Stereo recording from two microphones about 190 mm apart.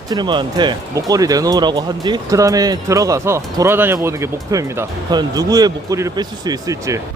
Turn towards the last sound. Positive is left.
turn(degrees=-15)  # may be behind; listen again after turning